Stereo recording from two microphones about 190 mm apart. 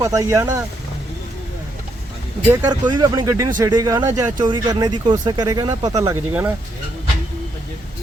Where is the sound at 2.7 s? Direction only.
20° right (ahead or behind).